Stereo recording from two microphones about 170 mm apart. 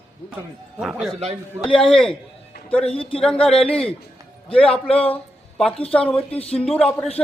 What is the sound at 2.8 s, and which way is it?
Speech, 35° left (ahead or behind).